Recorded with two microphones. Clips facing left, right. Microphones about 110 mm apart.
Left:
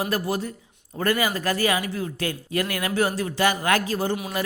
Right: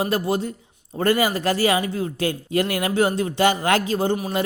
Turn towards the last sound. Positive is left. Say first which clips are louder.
# right 3 dB
turn(degrees=-20)  # may be behind; listen again after turning